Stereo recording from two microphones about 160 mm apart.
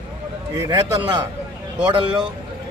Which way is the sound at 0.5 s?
25° right (ahead or behind).